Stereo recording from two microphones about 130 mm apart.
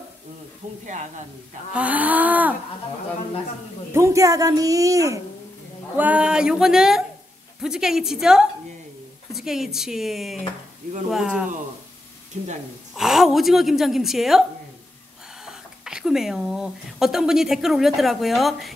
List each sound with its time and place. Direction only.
1.7 s cattle: 10° right (ahead or behind)
3.9 s speech: 25° right (ahead or behind)
5.9 s a woman's voice: 10° right (ahead or behind)
12.3 s speech: 65° right (ahead or behind)
12.9 s a woman's voice: centre (ahead or behind)
15.4 s speech: 5° right (ahead or behind)